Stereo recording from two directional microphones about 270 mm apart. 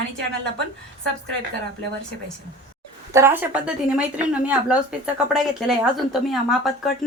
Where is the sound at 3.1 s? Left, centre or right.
Centre.